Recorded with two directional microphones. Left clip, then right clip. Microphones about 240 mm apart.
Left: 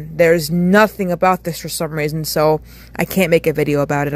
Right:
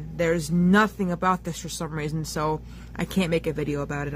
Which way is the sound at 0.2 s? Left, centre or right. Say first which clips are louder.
Left 11 dB; left.